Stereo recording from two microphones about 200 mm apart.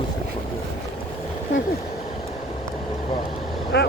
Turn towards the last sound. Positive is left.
turn(degrees=55)  # may be behind; listen again after turning